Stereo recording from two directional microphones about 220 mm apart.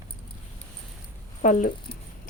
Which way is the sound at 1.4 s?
35° left (ahead or behind).